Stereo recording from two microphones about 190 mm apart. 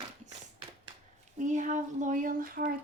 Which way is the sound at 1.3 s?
40° right (ahead or behind).